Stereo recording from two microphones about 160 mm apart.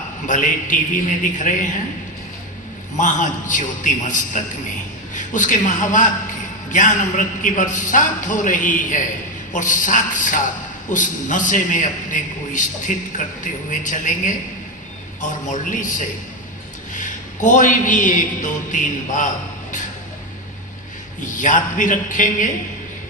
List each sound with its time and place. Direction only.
0.3 s a man's voice: 50° left (ahead or behind)
3.0 s a man's voice: 50° left (ahead or behind)
21.3 s a man's voice: 50° left (ahead or behind)